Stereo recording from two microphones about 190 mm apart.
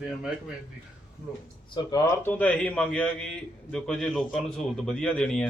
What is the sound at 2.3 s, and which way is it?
A man's voice, 10° left (ahead or behind).